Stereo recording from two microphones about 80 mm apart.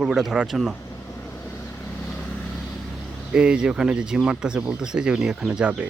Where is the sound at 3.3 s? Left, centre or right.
Centre.